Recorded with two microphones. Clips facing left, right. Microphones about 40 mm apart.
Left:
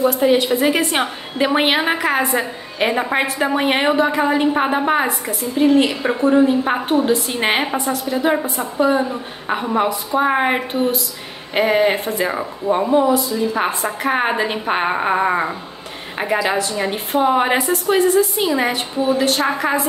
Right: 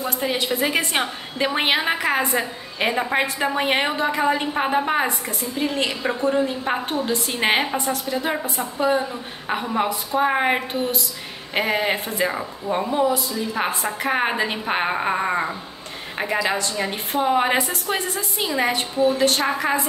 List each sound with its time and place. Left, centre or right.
0.1 s a woman's voice: centre
18.9 s a woman's voice: centre
19.2 s a woman's voice: centre